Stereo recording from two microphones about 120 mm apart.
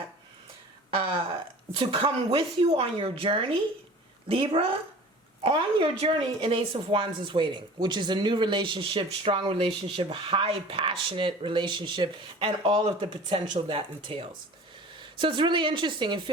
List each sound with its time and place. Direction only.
1.7 s a woman's voice: 50° right (ahead or behind)